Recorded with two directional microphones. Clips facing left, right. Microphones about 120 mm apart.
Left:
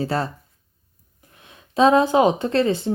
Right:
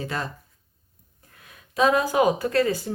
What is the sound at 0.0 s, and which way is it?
Speech, 35° left (ahead or behind).